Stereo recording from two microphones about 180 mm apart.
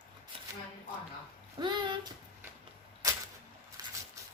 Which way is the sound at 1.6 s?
25° right (ahead or behind).